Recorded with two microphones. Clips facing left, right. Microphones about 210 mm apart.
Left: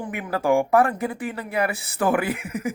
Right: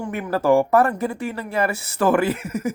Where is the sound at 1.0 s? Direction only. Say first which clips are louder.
Right 2 dB; 15° left (ahead or behind).